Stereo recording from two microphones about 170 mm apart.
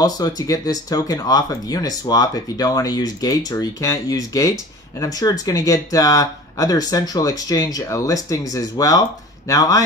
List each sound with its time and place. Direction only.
0.0 s speech: 20° left (ahead or behind)